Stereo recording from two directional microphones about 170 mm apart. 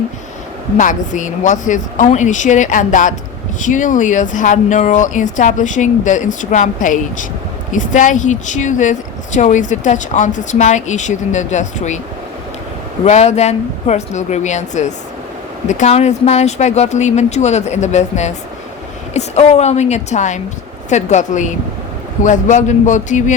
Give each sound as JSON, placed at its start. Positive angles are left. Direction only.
{"t": 0.8, "sound": "speech", "side_deg": 50}
{"t": 13.1, "sound": "speech", "side_deg": 40}